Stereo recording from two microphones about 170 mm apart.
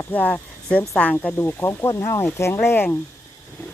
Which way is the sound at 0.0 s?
10° left (ahead or behind).